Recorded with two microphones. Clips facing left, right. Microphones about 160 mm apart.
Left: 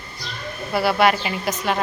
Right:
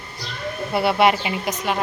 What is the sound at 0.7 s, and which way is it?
A woman's voice, 25° right (ahead or behind).